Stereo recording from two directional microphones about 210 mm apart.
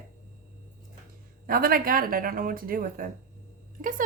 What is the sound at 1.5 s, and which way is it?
A woman's voice, 45° right (ahead or behind).